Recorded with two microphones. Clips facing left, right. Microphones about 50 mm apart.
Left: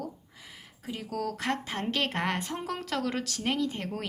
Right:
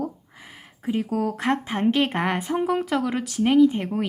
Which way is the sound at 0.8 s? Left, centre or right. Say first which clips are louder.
Right 9 dB; right.